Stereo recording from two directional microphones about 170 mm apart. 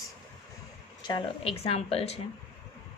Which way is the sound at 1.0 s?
30° left (ahead or behind).